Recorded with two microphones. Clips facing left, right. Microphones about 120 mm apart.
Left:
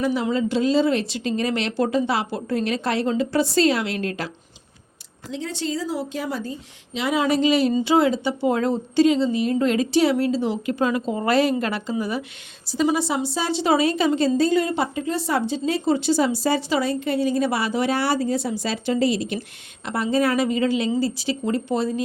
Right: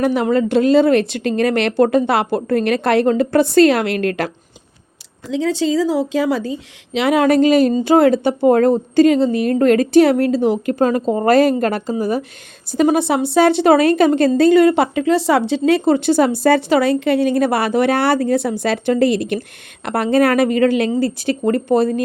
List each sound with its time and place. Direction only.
0.0 s a woman's voice: 60° right (ahead or behind)
5.3 s a woman's voice: 90° right; by 12.2 s 45° right (ahead or behind)
12.7 s a woman's voice: 55° right (ahead or behind)